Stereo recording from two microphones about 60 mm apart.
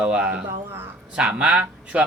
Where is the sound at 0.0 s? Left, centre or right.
Centre.